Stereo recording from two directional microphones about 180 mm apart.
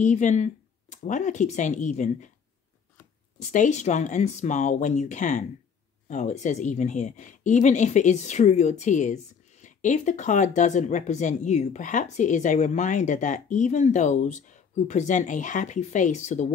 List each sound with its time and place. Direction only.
0.0 s a woman's voice: 40° left (ahead or behind)
3.3 s a woman's voice: 40° left (ahead or behind)